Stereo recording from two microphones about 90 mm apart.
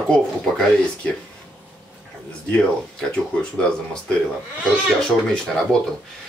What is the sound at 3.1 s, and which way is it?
Speech, 10° left (ahead or behind).